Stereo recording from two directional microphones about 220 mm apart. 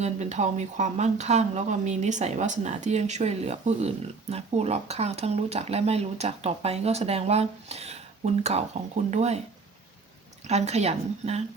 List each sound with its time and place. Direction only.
0.0 s speech: 30° right (ahead or behind)
10.4 s speech: 30° right (ahead or behind)